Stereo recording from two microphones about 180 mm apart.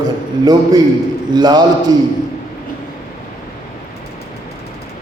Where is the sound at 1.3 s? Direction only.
25° right (ahead or behind).